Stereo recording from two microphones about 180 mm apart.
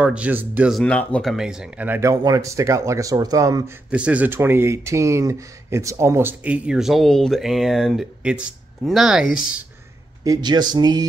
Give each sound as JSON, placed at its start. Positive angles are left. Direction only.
{"t": 0.0, "sound": "speech", "side_deg": -5}
{"t": 3.9, "sound": "speech", "side_deg": -5}
{"t": 10.2, "sound": "speech", "side_deg": -20}